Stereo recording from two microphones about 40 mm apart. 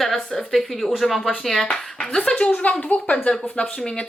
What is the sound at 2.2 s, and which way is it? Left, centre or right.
Speech, left.